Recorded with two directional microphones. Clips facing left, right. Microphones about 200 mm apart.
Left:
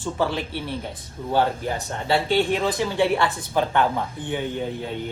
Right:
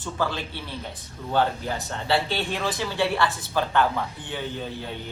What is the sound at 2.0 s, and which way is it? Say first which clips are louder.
Speech: left 5 dB; 15° left (ahead or behind).